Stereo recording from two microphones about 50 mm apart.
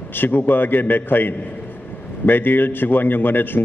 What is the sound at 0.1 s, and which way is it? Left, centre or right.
A man's voice, left.